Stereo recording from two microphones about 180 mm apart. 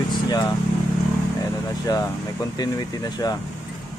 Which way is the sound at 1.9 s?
20° left (ahead or behind).